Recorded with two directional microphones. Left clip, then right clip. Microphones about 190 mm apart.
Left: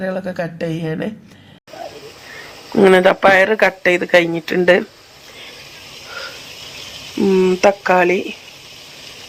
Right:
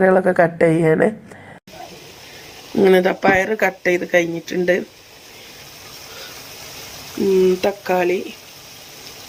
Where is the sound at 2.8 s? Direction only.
10° right (ahead or behind).